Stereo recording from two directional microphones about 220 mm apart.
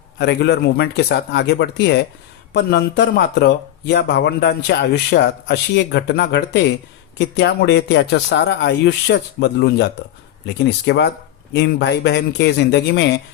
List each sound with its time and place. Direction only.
0.2 s speech: 50° left (ahead or behind)